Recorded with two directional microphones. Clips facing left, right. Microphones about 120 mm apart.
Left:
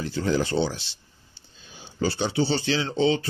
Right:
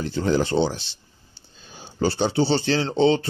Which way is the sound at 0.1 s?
30° right (ahead or behind).